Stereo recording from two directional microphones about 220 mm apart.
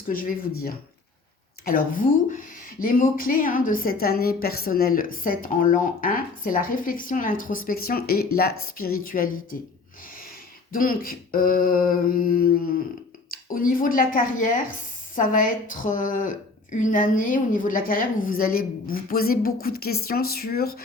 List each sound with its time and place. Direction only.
0.1 s a woman's voice: 40° left (ahead or behind)
1.6 s a woman's voice: 40° left (ahead or behind)
10.7 s a woman's voice: 40° left (ahead or behind)